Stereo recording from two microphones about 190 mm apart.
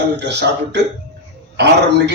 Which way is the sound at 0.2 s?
65° right (ahead or behind).